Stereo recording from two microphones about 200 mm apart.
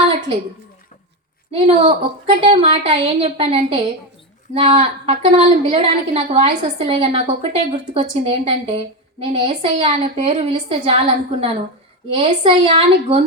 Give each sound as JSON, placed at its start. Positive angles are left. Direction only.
{"t": 1.5, "sound": "a woman's voice", "side_deg": -30}